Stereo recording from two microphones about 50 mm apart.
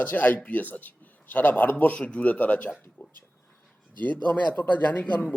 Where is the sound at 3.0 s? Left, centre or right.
Left.